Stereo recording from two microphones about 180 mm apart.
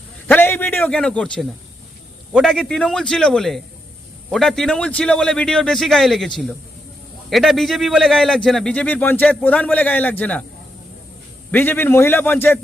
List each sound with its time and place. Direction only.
0.3 s a sound: 10° left (ahead or behind)
0.8 s a man's voice: 5° left (ahead or behind)
11.5 s a man's voice: 10° left (ahead or behind)